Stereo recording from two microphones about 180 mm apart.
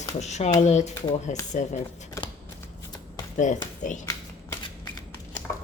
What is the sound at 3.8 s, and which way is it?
Speech, 45° left (ahead or behind).